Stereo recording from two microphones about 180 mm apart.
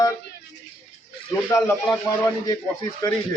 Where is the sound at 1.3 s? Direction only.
15° left (ahead or behind).